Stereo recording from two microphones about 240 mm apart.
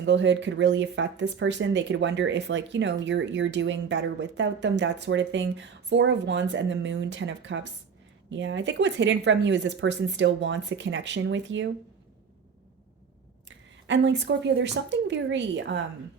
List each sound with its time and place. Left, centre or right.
0.0 s speech: right
13.8 s speech: right